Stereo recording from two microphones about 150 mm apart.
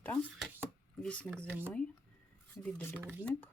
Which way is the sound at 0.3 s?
10° right (ahead or behind).